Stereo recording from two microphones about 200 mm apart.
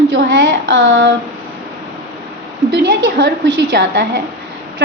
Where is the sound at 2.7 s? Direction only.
60° right (ahead or behind).